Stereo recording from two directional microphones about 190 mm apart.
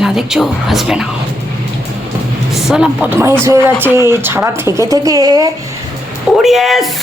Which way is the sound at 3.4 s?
15° right (ahead or behind).